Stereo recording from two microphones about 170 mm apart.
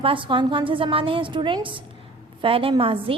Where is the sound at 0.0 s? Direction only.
30° right (ahead or behind).